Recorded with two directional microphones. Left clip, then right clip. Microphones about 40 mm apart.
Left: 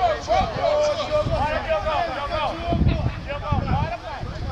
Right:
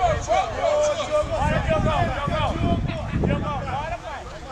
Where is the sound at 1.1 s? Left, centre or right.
Right.